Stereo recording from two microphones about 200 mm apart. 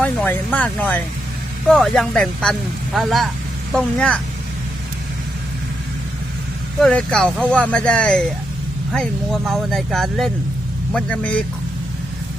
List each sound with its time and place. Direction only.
0.0 s speech: 5° left (ahead or behind)
6.7 s speech: centre (ahead or behind)